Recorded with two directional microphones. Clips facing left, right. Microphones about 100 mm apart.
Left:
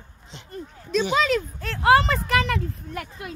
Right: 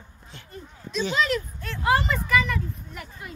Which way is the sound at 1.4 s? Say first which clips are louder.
Left 4 dB; 90° left.